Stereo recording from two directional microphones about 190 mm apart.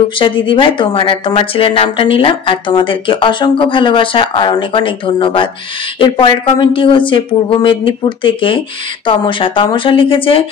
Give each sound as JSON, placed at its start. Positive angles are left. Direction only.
{"t": 0.2, "sound": "a woman's voice", "side_deg": 25}